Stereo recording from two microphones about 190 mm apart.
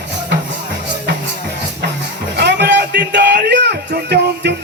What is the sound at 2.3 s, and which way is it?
Music, 60° right (ahead or behind).